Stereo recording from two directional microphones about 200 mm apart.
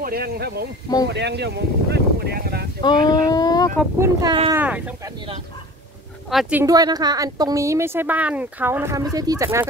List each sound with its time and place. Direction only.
0.0 s speech: 50° right (ahead or behind)
2.8 s speech: 20° left (ahead or behind)
4.0 s speech: 20° right (ahead or behind)
4.6 s a woman's voice: 5° right (ahead or behind)
6.6 s a woman's voice: 20° right (ahead or behind)